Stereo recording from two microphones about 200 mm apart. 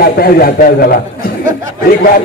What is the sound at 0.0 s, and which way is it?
A man's voice, 45° left (ahead or behind).